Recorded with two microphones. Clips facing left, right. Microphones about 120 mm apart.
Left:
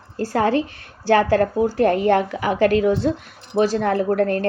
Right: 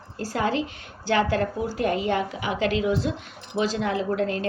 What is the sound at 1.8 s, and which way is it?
A woman's voice, 60° left (ahead or behind).